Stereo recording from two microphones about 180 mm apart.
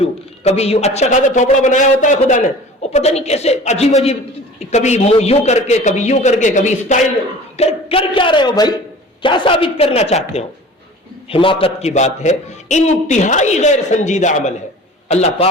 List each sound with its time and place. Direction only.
0.0 s a man's voice: 35° left (ahead or behind)